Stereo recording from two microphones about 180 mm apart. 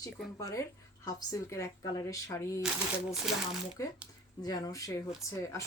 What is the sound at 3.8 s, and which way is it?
Speech, 15° left (ahead or behind).